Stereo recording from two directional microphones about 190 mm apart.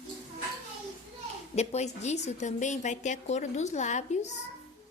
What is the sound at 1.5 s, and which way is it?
A woman's voice, 35° left (ahead or behind).